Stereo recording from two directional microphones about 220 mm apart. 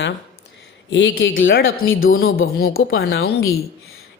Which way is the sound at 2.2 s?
45° left (ahead or behind).